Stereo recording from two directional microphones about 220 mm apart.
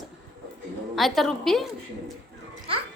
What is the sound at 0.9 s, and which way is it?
Speech, centre (ahead or behind).